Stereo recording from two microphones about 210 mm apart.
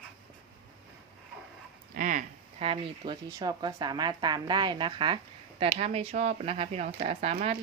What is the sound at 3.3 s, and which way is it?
A woman's voice, 20° right (ahead or behind).